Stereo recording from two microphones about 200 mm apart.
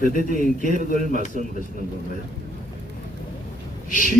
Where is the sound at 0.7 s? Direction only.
35° right (ahead or behind).